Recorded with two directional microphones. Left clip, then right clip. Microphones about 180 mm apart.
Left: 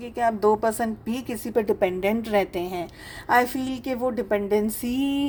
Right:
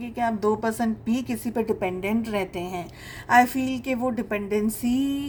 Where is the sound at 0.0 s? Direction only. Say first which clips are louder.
Left 3 dB; 40° left (ahead or behind).